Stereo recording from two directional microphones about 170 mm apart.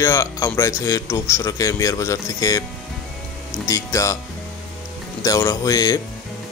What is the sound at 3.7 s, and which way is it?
Speech, 20° left (ahead or behind).